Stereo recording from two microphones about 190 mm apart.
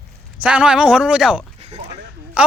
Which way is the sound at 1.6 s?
35° right (ahead or behind).